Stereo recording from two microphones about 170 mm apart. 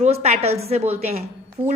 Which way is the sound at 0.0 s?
40° right (ahead or behind).